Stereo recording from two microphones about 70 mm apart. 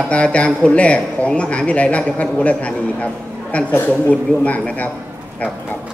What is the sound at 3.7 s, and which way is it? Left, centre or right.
A man's voice, left.